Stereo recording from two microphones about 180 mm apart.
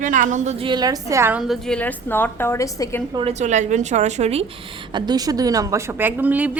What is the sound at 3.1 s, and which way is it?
A woman's voice, 30° right (ahead or behind).